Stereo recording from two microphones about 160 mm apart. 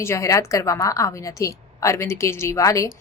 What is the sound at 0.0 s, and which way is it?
A woman's voice, 20° left (ahead or behind).